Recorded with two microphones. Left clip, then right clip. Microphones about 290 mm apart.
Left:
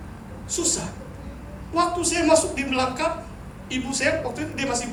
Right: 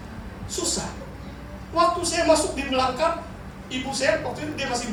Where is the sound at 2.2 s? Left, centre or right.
Left.